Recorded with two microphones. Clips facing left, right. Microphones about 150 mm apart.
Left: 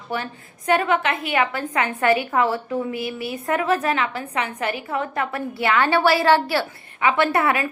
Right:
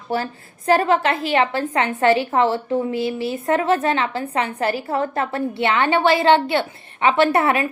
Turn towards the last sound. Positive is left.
turn(degrees=-25)  # may be behind; listen again after turning